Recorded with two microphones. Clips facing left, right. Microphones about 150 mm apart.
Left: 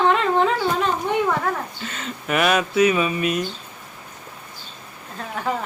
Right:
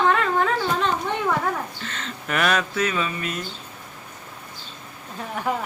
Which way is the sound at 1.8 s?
10° left (ahead or behind).